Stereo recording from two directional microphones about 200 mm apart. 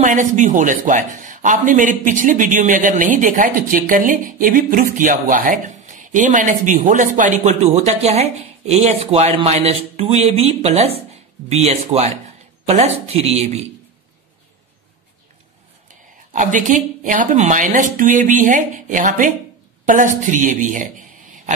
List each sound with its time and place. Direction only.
0.0 s a man's voice: 40° right (ahead or behind)
15.9 s a man's voice: 40° right (ahead or behind)